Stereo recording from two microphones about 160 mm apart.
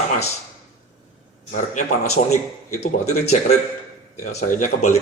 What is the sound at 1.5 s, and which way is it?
A man's voice, 50° left (ahead or behind).